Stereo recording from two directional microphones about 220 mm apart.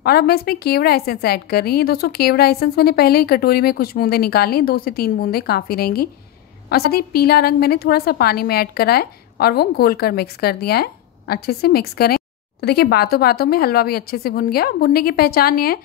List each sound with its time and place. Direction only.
0.0 s a woman's voice: 45° left (ahead or behind)